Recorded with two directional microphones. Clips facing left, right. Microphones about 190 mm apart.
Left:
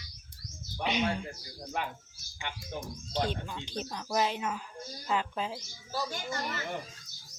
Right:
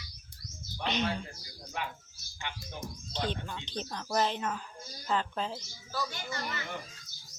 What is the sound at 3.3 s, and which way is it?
Speech, 10° left (ahead or behind).